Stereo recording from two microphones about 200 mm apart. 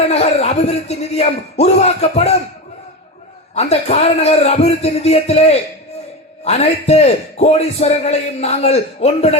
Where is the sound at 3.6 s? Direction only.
35° left (ahead or behind).